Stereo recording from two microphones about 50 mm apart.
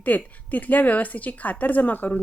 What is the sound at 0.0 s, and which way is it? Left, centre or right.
Speech, left.